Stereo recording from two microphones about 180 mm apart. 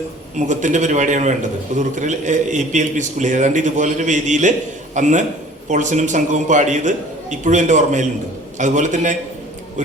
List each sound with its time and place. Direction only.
0.3 s a man's voice: 45° right (ahead or behind)